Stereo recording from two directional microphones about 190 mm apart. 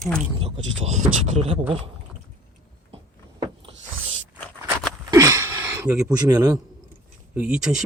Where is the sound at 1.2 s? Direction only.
30° right (ahead or behind).